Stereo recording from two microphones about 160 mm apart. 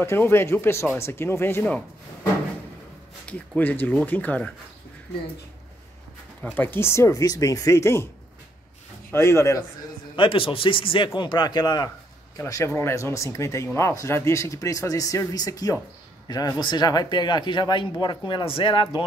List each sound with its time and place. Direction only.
0.0 s speech: 15° left (ahead or behind)
3.3 s speech: 10° left (ahead or behind)
6.4 s speech: 10° left (ahead or behind)
9.1 s speech: 15° left (ahead or behind)
10.1 s a man's voice: 30° left (ahead or behind)